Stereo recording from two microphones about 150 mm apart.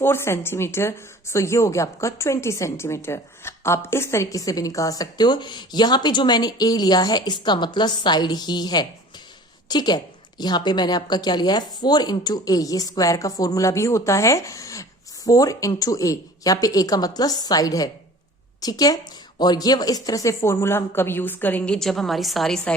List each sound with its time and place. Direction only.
0.0 s a woman's voice: 15° left (ahead or behind)